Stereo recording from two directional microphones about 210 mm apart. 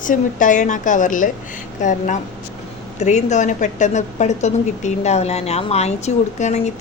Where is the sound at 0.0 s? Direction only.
40° left (ahead or behind).